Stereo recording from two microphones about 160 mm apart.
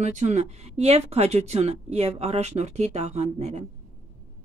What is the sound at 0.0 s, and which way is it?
Speech, 45° right (ahead or behind).